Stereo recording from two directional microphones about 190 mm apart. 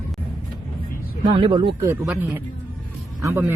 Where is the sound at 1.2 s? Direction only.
25° right (ahead or behind).